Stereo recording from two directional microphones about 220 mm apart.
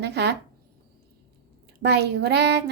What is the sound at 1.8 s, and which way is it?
Speech, 50° right (ahead or behind).